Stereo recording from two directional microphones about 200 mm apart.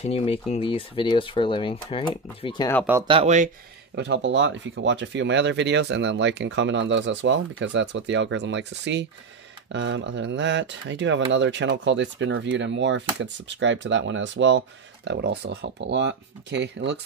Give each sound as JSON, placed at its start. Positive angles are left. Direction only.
{"t": 0.0, "sound": "speech", "side_deg": 30}
{"t": 3.1, "sound": "speech", "side_deg": -30}
{"t": 3.9, "sound": "speech", "side_deg": -60}